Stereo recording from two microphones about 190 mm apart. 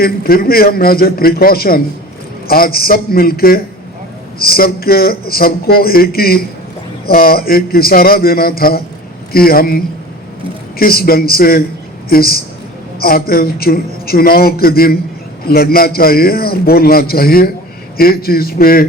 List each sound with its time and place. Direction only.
0.0 s speech: 50° left (ahead or behind)